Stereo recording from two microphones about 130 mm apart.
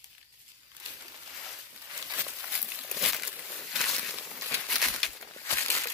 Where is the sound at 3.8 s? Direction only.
5° left (ahead or behind).